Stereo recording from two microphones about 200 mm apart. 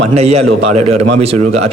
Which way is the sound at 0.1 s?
30° right (ahead or behind).